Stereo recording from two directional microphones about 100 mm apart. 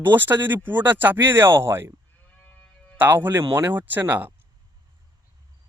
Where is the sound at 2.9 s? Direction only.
20° right (ahead or behind).